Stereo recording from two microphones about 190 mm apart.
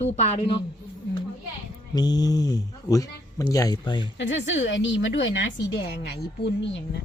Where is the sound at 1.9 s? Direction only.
20° left (ahead or behind).